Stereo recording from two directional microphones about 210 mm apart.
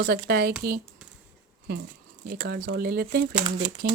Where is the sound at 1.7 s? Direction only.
50° right (ahead or behind).